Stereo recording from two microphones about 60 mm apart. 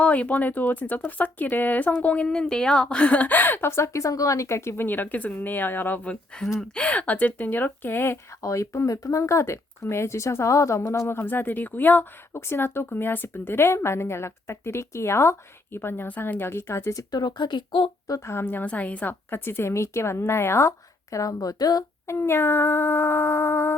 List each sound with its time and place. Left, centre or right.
0.0 s speech: left
2.2 s a woman's voice: centre; by 3.7 s left
3.7 s a woman's voice: left
4.9 s speech: left
8.4 s speech: left
11.1 s speech: left
12.3 s speech: left
18.3 s speech: left
18.6 s speech: left
19.3 s a woman's voice: left
22.0 s speech: left